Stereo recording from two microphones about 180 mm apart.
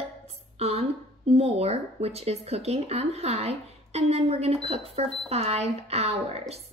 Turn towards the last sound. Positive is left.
turn(degrees=-35)  # may be behind; listen again after turning